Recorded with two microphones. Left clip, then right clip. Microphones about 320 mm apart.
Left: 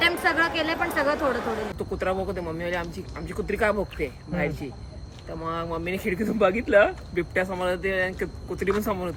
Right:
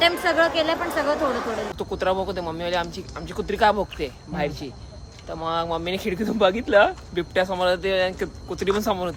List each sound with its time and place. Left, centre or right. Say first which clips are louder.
0.0 s speech: right 3 dB; centre
1.9 s speech: right 4 dB; centre